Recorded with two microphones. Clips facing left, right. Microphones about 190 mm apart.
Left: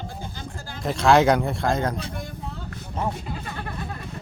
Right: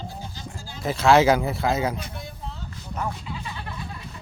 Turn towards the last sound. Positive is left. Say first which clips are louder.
# left 3 dB
turn(degrees=55)  # may be behind; listen again after turning